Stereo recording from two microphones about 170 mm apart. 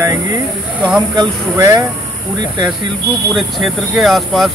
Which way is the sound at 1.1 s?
20° right (ahead or behind).